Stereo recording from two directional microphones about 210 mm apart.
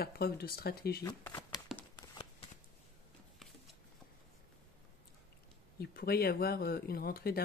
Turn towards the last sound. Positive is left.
turn(degrees=45)  # may be behind; listen again after turning